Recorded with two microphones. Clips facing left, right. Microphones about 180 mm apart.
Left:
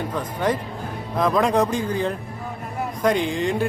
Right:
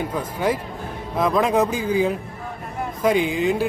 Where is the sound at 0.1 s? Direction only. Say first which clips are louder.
Right 1 dB; 10° right (ahead or behind).